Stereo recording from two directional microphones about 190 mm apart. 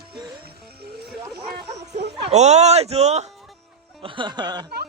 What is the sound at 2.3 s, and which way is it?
Speech, 35° right (ahead or behind).